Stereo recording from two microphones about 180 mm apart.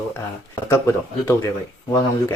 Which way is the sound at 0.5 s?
15° left (ahead or behind).